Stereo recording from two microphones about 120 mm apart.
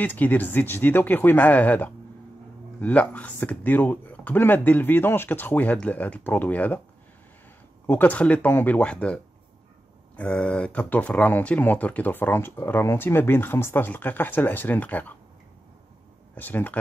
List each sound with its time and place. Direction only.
0.0 s speech: 15° left (ahead or behind)
7.8 s speech: 15° left (ahead or behind)
16.3 s speech: 15° left (ahead or behind)